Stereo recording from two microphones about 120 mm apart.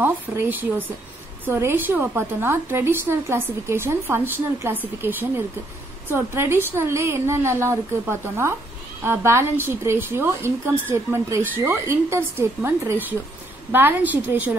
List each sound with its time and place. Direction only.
0.0 s a woman's voice: 15° right (ahead or behind)